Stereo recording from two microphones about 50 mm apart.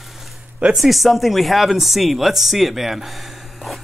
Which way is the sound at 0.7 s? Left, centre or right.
Centre.